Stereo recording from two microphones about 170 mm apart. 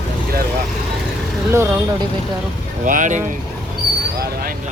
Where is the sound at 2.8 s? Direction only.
50° right (ahead or behind).